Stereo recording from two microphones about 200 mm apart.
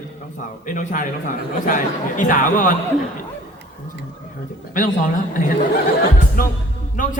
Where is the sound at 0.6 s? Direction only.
40° left (ahead or behind).